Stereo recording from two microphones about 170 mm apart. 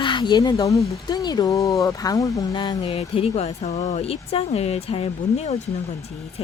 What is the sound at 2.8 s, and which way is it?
Speech, 35° left (ahead or behind).